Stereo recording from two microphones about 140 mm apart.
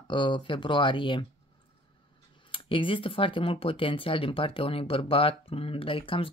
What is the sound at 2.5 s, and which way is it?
Speech, 40° left (ahead or behind).